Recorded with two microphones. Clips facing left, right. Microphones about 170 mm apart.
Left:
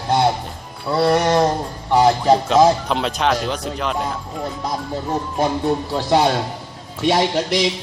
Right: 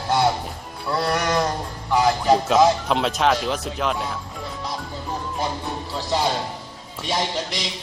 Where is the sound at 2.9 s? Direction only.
Centre (ahead or behind).